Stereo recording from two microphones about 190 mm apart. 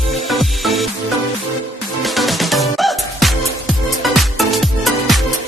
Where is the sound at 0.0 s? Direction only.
Centre (ahead or behind).